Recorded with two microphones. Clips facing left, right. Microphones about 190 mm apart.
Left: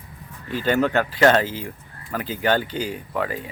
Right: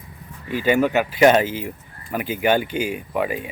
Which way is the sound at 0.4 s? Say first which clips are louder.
Right 2 dB; 10° right (ahead or behind).